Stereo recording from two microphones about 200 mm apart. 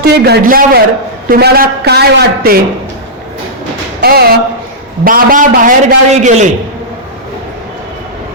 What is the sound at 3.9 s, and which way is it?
A man's voice, 50° right (ahead or behind).